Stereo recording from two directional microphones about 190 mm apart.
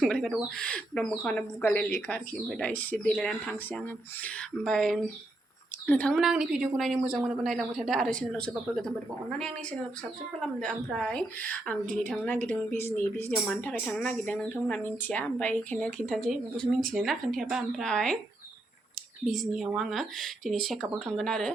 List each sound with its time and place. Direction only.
0.0 s speech: centre (ahead or behind)
19.2 s speech: centre (ahead or behind)